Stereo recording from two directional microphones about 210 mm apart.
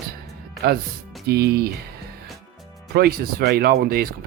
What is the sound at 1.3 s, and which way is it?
Speech, 50° right (ahead or behind).